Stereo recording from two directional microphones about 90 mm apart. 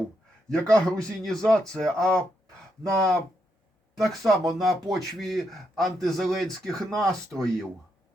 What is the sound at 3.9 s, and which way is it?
A man's voice, centre (ahead or behind).